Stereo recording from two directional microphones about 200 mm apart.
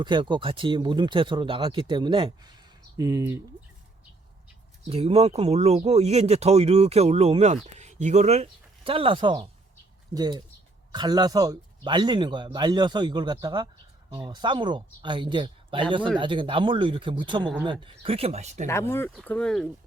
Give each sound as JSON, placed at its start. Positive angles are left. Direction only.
{"t": 0.0, "sound": "speech", "side_deg": -25}
{"t": 4.9, "sound": "speech", "side_deg": -30}
{"t": 18.7, "sound": "speech", "side_deg": 15}